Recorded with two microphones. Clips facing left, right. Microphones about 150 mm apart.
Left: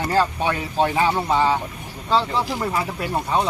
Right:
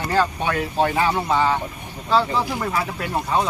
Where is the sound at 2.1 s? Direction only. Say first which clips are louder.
Right 1 dB; 5° right (ahead or behind).